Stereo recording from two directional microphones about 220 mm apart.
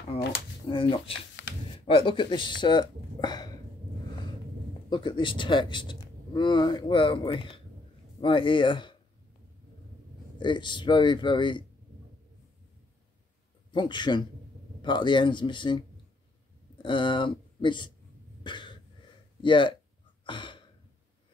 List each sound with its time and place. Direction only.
0.7 s speech: 25° left (ahead or behind)
4.8 s speech: 20° left (ahead or behind)
10.4 s speech: 20° left (ahead or behind)
13.7 s speech: 20° left (ahead or behind)
18.4 s cough: 20° left (ahead or behind)
19.4 s speech: 20° left (ahead or behind)
20.2 s a sound: 20° left (ahead or behind)